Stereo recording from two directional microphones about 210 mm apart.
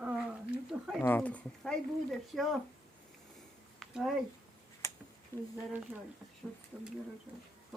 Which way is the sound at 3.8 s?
Centre (ahead or behind).